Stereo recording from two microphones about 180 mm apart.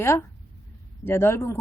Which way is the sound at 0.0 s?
15° left (ahead or behind).